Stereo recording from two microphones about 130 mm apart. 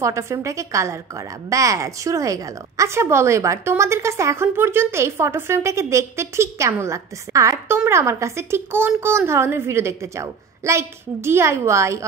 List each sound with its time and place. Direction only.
0.0 s a woman's voice: 20° right (ahead or behind)